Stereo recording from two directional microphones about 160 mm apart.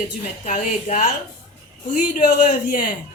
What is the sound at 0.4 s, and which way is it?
A man's voice, 50° left (ahead or behind).